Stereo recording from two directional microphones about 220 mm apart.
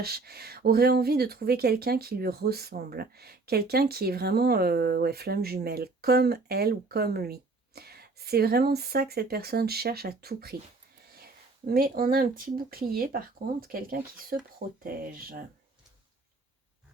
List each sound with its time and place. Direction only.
0.0 s speech: 45° right (ahead or behind)